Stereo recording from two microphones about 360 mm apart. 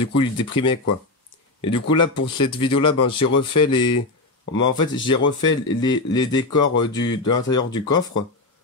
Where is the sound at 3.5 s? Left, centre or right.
Centre.